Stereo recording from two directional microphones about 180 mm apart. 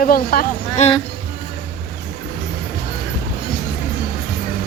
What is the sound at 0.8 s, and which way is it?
Speech, 40° left (ahead or behind).